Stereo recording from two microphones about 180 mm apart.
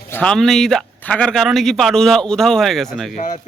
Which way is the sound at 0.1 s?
5° left (ahead or behind).